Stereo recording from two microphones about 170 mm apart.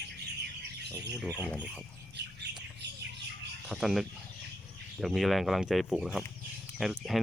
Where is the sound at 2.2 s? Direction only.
90° right.